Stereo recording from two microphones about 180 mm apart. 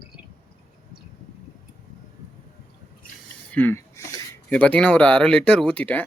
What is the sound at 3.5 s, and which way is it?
Speech, 10° left (ahead or behind).